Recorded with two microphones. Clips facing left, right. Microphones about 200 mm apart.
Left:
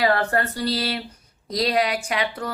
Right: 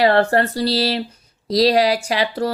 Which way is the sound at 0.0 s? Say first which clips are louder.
Right 6 dB; 30° right (ahead or behind).